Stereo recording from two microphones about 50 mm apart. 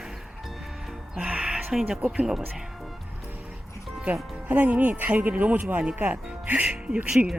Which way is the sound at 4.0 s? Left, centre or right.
Right.